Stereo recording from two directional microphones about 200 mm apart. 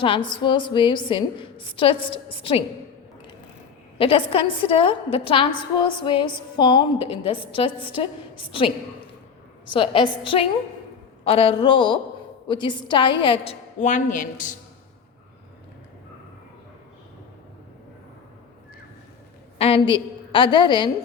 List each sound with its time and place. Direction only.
0.0 s a woman's voice: 25° left (ahead or behind)
3.9 s a woman's voice: 25° left (ahead or behind)
19.5 s a woman's voice: 30° left (ahead or behind)